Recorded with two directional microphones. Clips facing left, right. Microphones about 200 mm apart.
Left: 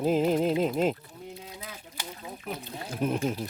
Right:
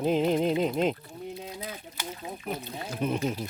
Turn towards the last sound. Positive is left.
turn(degrees=5)  # may be behind; listen again after turning